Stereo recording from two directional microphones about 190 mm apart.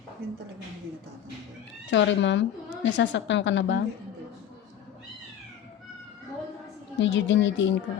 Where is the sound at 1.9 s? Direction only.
75° left (ahead or behind).